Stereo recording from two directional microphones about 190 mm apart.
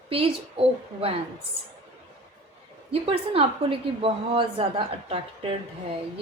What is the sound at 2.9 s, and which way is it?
A woman's voice, 30° right (ahead or behind).